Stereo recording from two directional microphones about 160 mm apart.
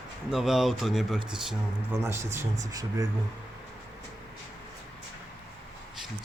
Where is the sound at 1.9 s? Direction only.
15° right (ahead or behind).